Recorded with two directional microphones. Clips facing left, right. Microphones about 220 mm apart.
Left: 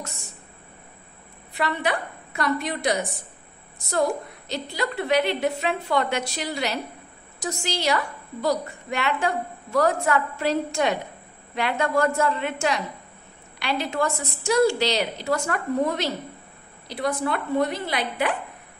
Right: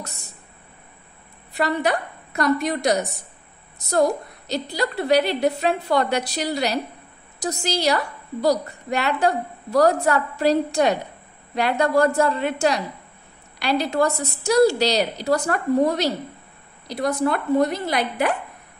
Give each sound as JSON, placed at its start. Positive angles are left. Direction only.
{"t": 1.5, "sound": "a woman's voice", "side_deg": -40}